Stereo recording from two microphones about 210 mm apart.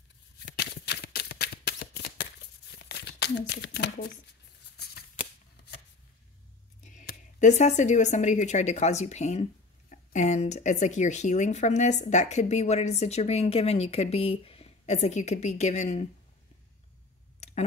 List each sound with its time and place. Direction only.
0.5 s shuffling cards: 50° left (ahead or behind)
2.7 s a sound: 50° left (ahead or behind)
6.8 s speech: 35° left (ahead or behind)